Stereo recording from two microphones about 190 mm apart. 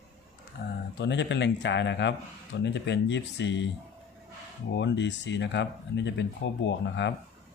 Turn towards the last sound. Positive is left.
turn(degrees=70)  # may be behind; listen again after turning